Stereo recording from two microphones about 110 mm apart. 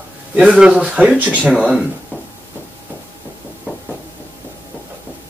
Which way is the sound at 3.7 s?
15° right (ahead or behind).